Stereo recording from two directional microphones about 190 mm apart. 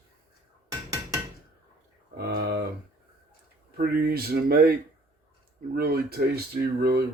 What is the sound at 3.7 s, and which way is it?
Speech, 50° right (ahead or behind).